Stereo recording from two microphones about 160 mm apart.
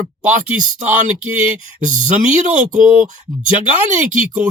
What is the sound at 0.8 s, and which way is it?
Speech, 50° right (ahead or behind).